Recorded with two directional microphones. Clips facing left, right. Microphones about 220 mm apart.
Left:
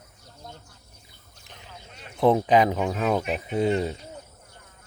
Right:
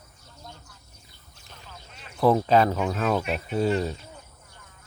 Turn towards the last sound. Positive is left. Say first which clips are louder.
# left 1 dB
turn(degrees=20)  # may be behind; listen again after turning